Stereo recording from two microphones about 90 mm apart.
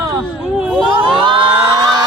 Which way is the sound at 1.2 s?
75° right (ahead or behind).